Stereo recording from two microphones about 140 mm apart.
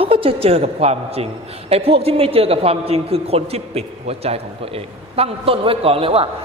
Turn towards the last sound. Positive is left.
turn(degrees=-40)  # may be behind; listen again after turning